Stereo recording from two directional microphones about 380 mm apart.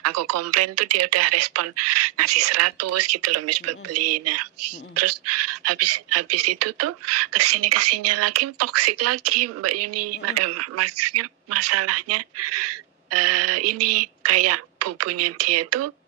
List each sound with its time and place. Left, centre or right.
0.0 s a woman's voice: right